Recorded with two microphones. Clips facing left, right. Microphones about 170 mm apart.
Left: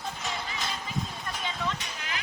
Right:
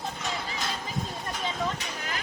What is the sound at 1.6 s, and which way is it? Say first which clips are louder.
Vehicle: right 2 dB; 40° right (ahead or behind).